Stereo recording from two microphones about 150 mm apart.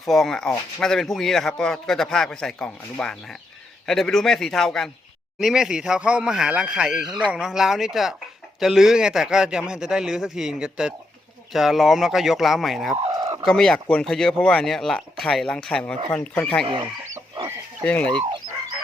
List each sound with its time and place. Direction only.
0.0 s speech: centre (ahead or behind)
13.1 s chicken: 25° right (ahead or behind)
13.4 s speech: 5° left (ahead or behind)
17.8 s speech: 5° left (ahead or behind)